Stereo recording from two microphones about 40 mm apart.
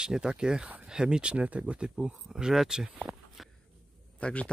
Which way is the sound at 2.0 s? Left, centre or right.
Centre.